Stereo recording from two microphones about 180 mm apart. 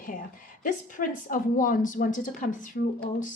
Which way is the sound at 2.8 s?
65° left (ahead or behind).